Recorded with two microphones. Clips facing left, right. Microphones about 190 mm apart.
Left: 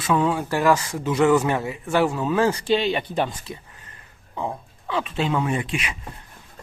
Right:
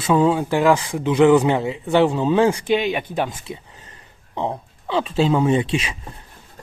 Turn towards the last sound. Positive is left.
turn(degrees=-30)  # may be behind; listen again after turning